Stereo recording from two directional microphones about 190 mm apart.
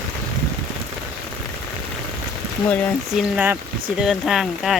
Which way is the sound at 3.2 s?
10° right (ahead or behind).